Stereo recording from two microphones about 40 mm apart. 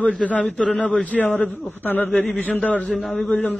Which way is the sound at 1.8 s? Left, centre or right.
Left.